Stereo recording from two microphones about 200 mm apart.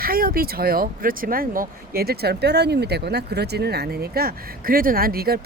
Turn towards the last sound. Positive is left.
turn(degrees=-50)  # may be behind; listen again after turning